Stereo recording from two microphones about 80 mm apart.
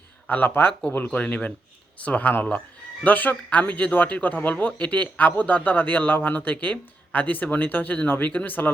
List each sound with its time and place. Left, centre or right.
0.3 s speech: left